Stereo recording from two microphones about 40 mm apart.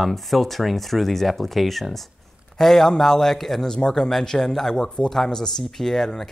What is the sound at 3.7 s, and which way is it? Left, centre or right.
Speech, centre.